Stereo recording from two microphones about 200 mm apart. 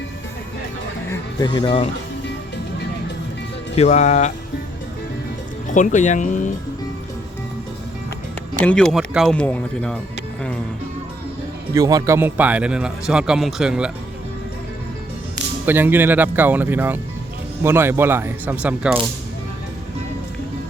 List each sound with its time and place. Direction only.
1.1 s speech: 20° left (ahead or behind)
3.8 s speech: 35° left (ahead or behind)
5.7 s speech: 40° left (ahead or behind)
8.6 s a man's voice: 5° left (ahead or behind)
11.7 s a man's voice: 15° right (ahead or behind)
15.6 s a man's voice: 10° right (ahead or behind)